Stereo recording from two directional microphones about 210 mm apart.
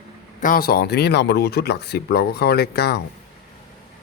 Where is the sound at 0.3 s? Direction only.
40° left (ahead or behind).